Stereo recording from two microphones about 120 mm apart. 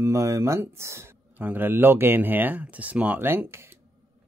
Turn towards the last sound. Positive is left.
turn(degrees=-20)  # may be behind; listen again after turning